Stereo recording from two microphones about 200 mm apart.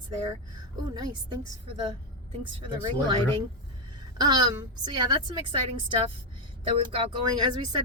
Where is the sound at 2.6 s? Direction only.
25° right (ahead or behind).